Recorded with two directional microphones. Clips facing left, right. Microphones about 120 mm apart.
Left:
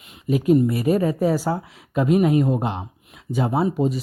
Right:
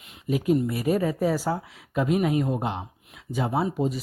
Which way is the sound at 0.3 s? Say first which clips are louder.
Left 6 dB; 45° left (ahead or behind).